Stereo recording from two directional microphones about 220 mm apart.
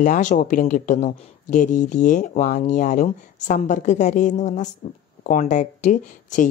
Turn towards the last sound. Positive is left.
turn(degrees=35)  # may be behind; listen again after turning